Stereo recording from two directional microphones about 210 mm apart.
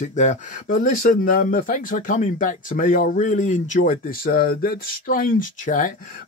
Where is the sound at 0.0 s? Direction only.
35° left (ahead or behind).